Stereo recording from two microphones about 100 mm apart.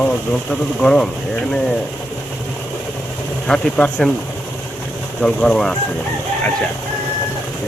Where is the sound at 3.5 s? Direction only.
10° left (ahead or behind).